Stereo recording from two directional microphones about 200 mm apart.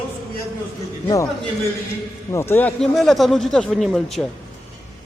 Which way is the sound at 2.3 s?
10° left (ahead or behind).